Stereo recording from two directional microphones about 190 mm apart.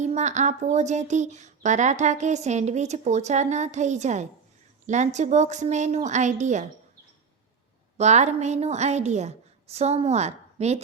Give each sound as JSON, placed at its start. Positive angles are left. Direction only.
{"t": 0.0, "sound": "speech", "side_deg": -40}
{"t": 7.9, "sound": "speech", "side_deg": -35}